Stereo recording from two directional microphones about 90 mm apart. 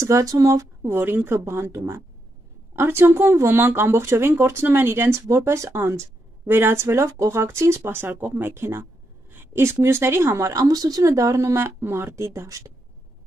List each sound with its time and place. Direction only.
0.0 s speech: 35° right (ahead or behind)